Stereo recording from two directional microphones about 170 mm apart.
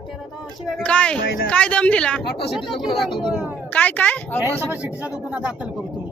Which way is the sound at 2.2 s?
75° left (ahead or behind).